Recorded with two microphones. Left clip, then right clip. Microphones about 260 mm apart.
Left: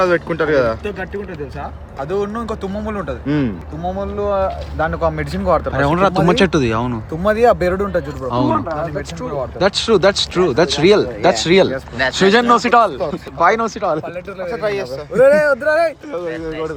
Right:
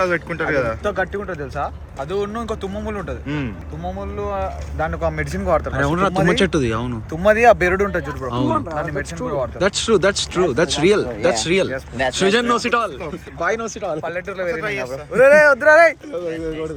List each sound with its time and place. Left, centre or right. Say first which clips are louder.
0.0 s speech: left 4 dB; left
2.0 s speech: left 3 dB; centre
3.2 s speech: left 10 dB; left
3.8 s speech: left 6 dB; centre
4.9 s speech: left 4 dB; centre
5.7 s speech: left 4 dB; centre
8.5 s speech: left 2 dB; centre
9.3 s speech: left 3 dB; centre; by 14.8 s left
15.1 s speech: even; centre